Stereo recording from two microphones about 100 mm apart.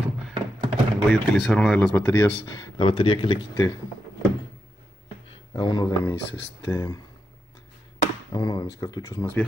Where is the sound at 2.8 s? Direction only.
60° left (ahead or behind).